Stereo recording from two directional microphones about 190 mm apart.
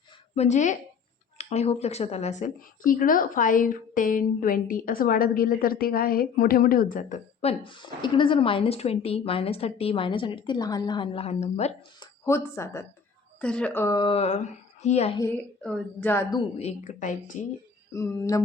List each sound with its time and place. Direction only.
0.3 s speech: 40° left (ahead or behind)
7.4 s a woman's voice: 25° left (ahead or behind)
11.9 s a woman's voice: 15° left (ahead or behind); by 15.2 s 35° left (ahead or behind)
15.6 s speech: 5° left (ahead or behind)
16.6 s speech: 35° left (ahead or behind)
17.9 s speech: 15° left (ahead or behind)